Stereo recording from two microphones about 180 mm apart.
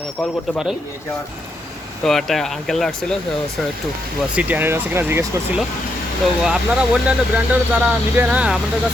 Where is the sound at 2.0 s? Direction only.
Centre (ahead or behind).